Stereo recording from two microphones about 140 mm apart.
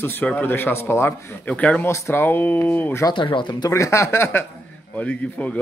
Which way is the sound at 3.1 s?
35° left (ahead or behind).